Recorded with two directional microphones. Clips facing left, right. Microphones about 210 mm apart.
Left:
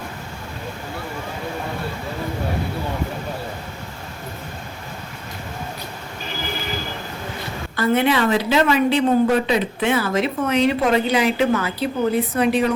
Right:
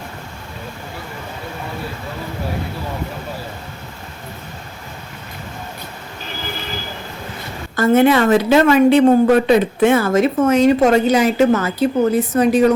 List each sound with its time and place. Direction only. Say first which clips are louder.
7.8 s a woman's voice: right 6 dB; 50° right (ahead or behind)